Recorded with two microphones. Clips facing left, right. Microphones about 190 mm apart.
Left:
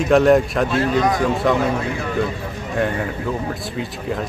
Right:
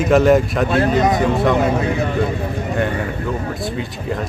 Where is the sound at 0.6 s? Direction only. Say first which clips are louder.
Right 3 dB; 55° right (ahead or behind).